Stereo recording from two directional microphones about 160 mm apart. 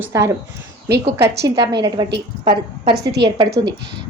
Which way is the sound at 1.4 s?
20° right (ahead or behind).